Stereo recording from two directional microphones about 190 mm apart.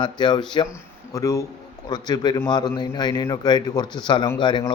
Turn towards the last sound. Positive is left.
turn(degrees=25)  # may be behind; listen again after turning